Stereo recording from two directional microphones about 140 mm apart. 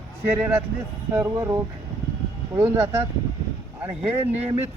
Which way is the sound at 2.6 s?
20° right (ahead or behind).